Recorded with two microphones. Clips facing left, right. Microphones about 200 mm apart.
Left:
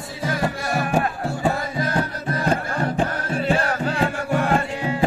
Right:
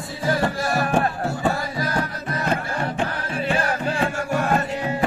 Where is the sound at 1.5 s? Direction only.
25° left (ahead or behind).